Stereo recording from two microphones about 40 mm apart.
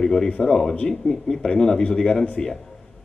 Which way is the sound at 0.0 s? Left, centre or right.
Centre.